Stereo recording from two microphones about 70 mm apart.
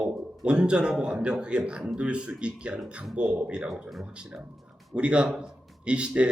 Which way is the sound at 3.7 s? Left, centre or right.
Centre.